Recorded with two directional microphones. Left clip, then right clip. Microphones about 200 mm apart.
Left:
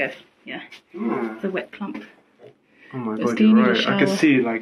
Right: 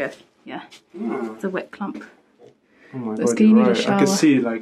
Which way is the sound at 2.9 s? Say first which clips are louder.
Right 2 dB; 15° right (ahead or behind).